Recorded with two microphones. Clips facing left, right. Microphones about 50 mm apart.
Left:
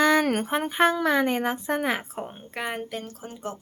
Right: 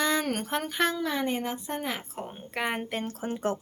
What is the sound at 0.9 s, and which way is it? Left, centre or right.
A woman's voice, left.